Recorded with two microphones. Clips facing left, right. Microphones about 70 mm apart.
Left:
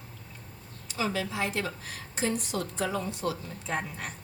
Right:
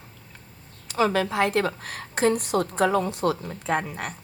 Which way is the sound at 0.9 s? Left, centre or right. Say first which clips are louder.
Right 8 dB; right.